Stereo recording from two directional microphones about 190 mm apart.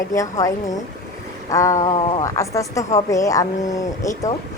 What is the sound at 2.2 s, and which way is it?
Speech, 15° left (ahead or behind).